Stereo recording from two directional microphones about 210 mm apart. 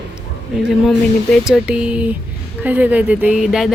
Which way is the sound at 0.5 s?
Centre (ahead or behind).